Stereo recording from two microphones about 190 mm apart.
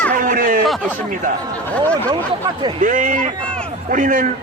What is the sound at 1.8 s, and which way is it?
Speech, 10° left (ahead or behind).